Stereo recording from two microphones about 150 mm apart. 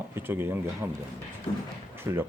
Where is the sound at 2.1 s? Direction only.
20° right (ahead or behind).